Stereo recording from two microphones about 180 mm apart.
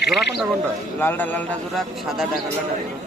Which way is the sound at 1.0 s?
10° left (ahead or behind).